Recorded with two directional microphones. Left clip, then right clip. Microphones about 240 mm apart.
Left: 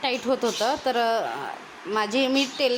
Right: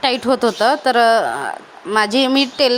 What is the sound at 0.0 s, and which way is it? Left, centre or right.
Speech, right.